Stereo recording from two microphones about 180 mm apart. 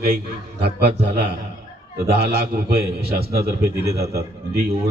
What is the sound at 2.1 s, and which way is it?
A man's voice, 60° right (ahead or behind).